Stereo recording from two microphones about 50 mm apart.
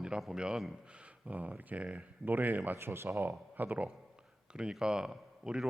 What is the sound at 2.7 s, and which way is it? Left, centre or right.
Speech, right.